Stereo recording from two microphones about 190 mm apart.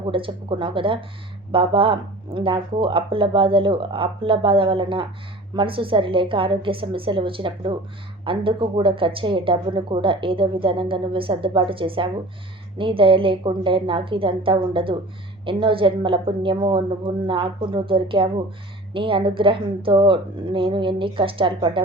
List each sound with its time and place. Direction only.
0.0 s a woman's voice: 25° right (ahead or behind)